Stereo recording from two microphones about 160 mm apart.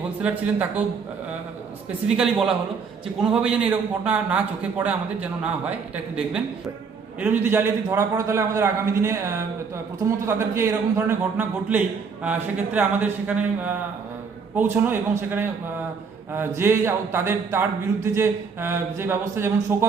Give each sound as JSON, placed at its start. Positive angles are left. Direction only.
{"t": 0.2, "sound": "speech", "side_deg": -10}
{"t": 2.0, "sound": "a man's voice", "side_deg": -5}
{"t": 7.2, "sound": "speech", "side_deg": -15}
{"t": 16.3, "sound": "speech", "side_deg": -15}